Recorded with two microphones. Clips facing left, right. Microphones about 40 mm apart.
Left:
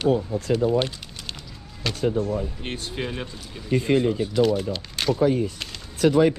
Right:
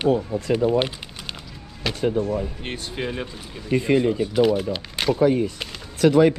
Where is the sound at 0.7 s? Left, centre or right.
Centre.